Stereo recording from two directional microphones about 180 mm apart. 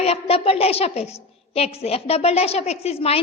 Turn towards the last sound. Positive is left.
turn(degrees=35)  # may be behind; listen again after turning